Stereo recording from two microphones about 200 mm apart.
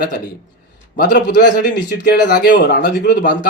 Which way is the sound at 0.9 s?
50° left (ahead or behind).